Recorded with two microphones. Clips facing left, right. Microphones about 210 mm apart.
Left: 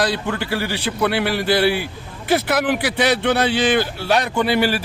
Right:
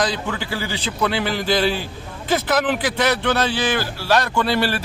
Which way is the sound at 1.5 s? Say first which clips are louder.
Left 2 dB; 10° left (ahead or behind).